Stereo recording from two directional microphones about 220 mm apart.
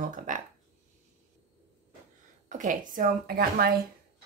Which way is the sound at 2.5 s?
35° right (ahead or behind).